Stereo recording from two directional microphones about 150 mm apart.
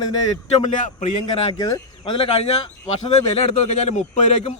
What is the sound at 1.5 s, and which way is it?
Speech, 25° left (ahead or behind).